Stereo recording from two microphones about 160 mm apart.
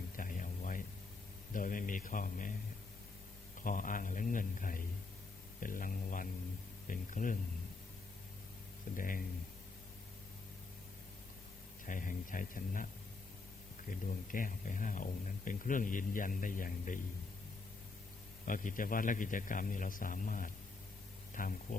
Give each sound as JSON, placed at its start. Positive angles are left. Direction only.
{"t": 0.2, "sound": "a sound", "side_deg": 55}
{"t": 1.5, "sound": "speech", "side_deg": 55}
{"t": 3.6, "sound": "speech", "side_deg": 55}
{"t": 9.0, "sound": "speech", "side_deg": 60}
{"t": 11.9, "sound": "speech", "side_deg": 55}
{"t": 13.9, "sound": "speech", "side_deg": 55}
{"t": 18.4, "sound": "speech", "side_deg": 55}